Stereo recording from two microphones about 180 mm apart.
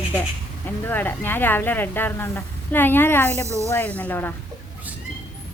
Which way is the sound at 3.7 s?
10° left (ahead or behind).